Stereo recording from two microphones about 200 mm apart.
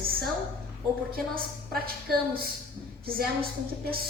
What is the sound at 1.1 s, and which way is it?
A woman's voice, 50° right (ahead or behind).